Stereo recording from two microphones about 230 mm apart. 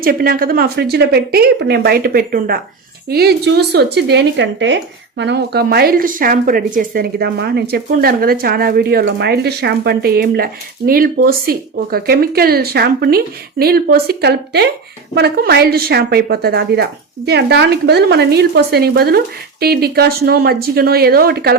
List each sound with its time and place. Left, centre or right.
0.0 s speech: right